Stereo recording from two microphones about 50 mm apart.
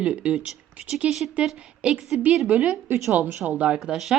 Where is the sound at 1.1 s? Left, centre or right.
Centre.